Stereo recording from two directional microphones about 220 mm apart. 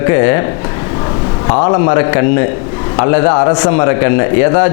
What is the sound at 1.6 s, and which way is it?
A man's voice, 25° left (ahead or behind).